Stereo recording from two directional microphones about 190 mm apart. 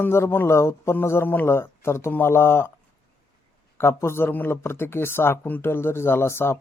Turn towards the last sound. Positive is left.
turn(degrees=15)  # may be behind; listen again after turning